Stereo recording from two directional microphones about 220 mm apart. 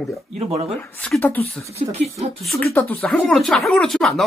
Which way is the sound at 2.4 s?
5° left (ahead or behind).